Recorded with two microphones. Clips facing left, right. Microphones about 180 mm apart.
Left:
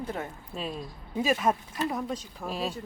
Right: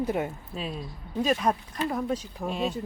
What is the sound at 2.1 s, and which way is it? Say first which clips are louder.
Speech: right 5 dB; 10° right (ahead or behind).